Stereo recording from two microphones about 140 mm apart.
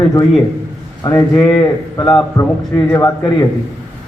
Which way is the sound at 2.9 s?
25° left (ahead or behind).